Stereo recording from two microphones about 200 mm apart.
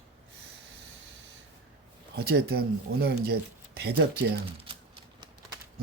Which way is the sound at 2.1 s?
50° right (ahead or behind).